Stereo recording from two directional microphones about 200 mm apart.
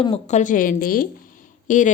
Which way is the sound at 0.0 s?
30° left (ahead or behind).